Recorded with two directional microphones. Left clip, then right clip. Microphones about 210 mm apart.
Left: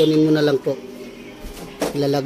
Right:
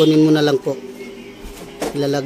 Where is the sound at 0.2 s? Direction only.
15° right (ahead or behind).